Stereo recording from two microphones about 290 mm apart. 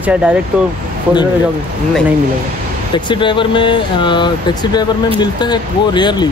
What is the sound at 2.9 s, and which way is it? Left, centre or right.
Speech, centre.